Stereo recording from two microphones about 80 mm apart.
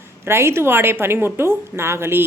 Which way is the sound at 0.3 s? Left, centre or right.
Right.